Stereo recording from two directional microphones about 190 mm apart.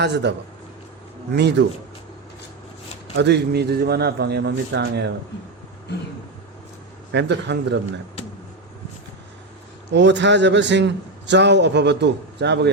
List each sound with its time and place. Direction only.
0.0 s a man's voice: 65° right (ahead or behind)
3.2 s a man's voice: 60° right (ahead or behind)
7.1 s a man's voice: 65° right (ahead or behind)
9.9 s a man's voice: 65° right (ahead or behind)